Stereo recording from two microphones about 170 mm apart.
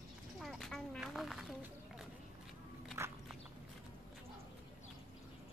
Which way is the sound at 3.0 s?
15° right (ahead or behind).